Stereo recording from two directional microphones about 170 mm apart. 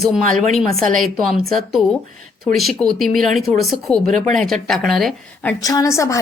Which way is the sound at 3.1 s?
50° right (ahead or behind).